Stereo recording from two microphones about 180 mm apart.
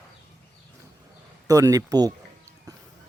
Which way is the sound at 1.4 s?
20° right (ahead or behind).